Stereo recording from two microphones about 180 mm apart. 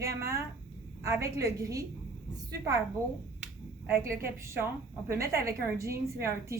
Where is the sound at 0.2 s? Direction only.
15° right (ahead or behind).